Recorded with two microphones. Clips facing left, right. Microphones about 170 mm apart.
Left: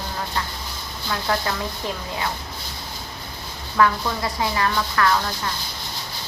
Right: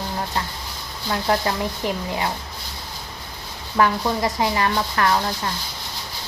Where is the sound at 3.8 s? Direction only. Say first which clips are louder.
Right 1 dB; 20° right (ahead or behind).